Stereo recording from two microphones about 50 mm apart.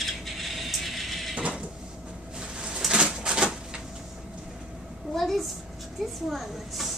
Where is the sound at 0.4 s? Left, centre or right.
Centre.